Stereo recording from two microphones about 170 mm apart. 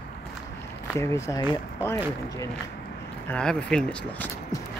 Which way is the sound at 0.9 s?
15° left (ahead or behind).